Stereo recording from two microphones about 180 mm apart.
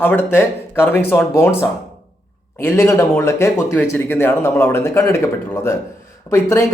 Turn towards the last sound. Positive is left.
turn(degrees=15)  # may be behind; listen again after turning